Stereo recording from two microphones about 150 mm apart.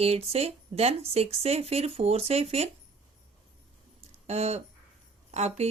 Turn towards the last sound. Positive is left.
turn(degrees=-45)  # may be behind; listen again after turning